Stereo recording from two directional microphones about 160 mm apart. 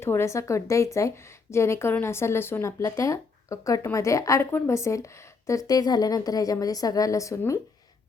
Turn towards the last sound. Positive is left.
turn(degrees=20)  # may be behind; listen again after turning